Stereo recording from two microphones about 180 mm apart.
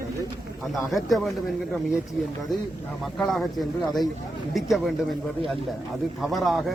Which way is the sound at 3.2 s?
Centre (ahead or behind).